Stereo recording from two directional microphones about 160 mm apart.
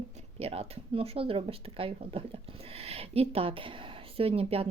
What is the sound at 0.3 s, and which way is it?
Speech, 40° right (ahead or behind).